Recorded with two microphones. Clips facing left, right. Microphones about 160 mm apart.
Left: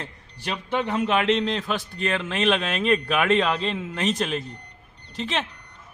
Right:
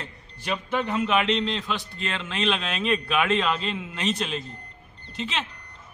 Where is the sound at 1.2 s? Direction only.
50° left (ahead or behind).